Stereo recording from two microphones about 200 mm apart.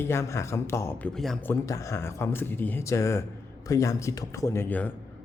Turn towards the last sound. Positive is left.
turn(degrees=10)  # may be behind; listen again after turning